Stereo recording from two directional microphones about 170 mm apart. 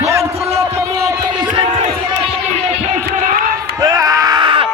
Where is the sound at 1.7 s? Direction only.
45° right (ahead or behind).